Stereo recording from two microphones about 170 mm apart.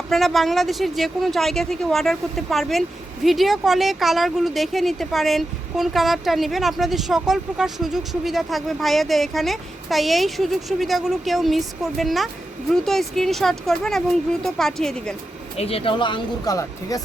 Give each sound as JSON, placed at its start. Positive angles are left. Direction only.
{"t": 0.1, "sound": "speech", "side_deg": 0}
{"t": 15.5, "sound": "speech", "side_deg": 35}